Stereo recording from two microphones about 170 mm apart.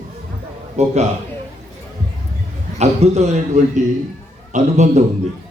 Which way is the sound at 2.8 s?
40° right (ahead or behind).